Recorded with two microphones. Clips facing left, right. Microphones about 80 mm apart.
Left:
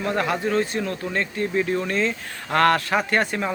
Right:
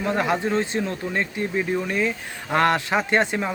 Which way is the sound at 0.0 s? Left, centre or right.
Centre.